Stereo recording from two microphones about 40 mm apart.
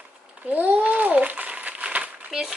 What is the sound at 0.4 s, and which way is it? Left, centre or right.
Babbling, right.